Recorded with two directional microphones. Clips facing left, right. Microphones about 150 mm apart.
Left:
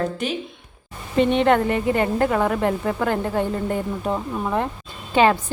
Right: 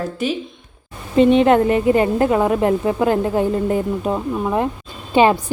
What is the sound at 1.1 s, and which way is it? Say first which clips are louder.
A woman's voice: right 5 dB; 20° right (ahead or behind).